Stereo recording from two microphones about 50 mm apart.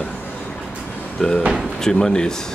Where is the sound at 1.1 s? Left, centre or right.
Centre.